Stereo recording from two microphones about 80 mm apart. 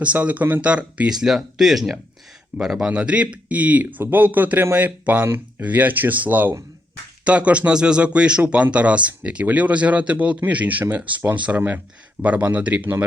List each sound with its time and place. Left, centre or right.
0.0 s a man's voice: centre
1.1 s a man's voice: centre